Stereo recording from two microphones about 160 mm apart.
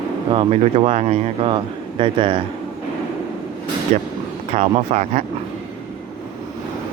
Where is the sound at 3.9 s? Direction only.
55° right (ahead or behind).